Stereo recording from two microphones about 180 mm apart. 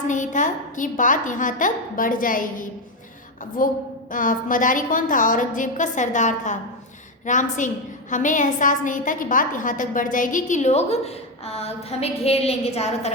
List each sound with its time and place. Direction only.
0.1 s a woman's voice: 45° left (ahead or behind)